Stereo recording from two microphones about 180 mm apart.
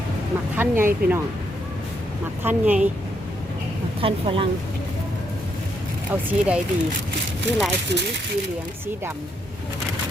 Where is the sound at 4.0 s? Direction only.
30° right (ahead or behind).